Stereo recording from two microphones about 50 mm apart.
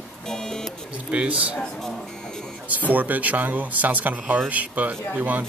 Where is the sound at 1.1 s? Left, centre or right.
Right.